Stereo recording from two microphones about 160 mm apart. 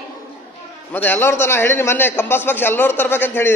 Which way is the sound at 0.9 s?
10° left (ahead or behind).